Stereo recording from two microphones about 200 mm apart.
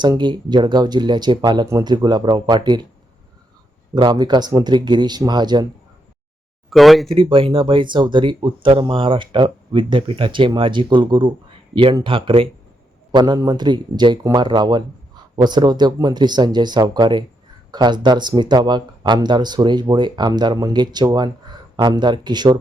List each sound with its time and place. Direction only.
0.0 s speech: 20° right (ahead or behind)
3.9 s speech: 20° right (ahead or behind)
6.7 s speech: centre (ahead or behind)
7.1 s speech: 25° right (ahead or behind)